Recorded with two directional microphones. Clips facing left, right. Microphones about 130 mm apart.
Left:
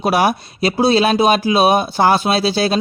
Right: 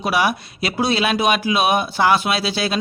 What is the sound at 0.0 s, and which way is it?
Speech, 40° left (ahead or behind).